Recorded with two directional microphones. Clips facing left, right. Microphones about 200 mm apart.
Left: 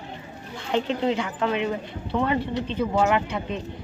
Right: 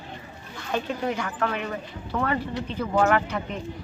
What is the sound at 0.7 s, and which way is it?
Speech, 20° left (ahead or behind).